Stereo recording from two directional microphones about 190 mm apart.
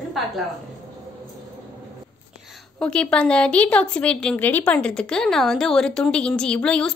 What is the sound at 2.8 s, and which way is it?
A woman's voice, 5° left (ahead or behind).